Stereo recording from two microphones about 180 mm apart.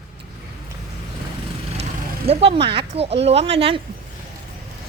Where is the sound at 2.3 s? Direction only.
35° right (ahead or behind).